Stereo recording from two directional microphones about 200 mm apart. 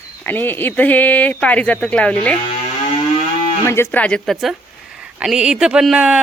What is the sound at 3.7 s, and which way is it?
Speech, 10° left (ahead or behind).